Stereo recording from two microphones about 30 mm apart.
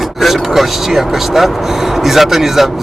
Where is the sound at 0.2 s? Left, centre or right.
Centre.